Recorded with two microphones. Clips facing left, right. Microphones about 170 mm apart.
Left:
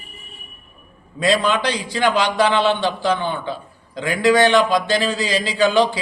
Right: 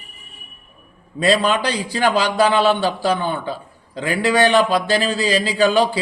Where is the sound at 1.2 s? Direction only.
35° right (ahead or behind).